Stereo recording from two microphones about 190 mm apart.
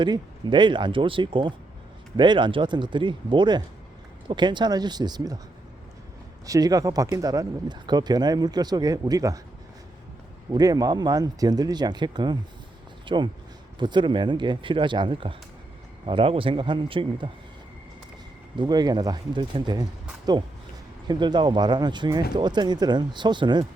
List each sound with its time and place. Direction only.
0.0 s speech: 25° right (ahead or behind)
6.4 s speech: 20° right (ahead or behind)
10.5 s speech: 20° right (ahead or behind)
18.5 s speech: 20° right (ahead or behind)
21.1 s speech: 25° right (ahead or behind)